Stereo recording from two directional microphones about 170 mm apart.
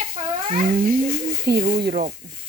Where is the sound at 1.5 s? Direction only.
70° right (ahead or behind).